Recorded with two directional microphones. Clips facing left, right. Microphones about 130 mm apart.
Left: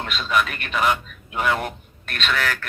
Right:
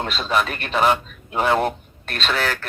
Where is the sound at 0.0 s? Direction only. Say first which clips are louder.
Right 1 dB; 30° right (ahead or behind).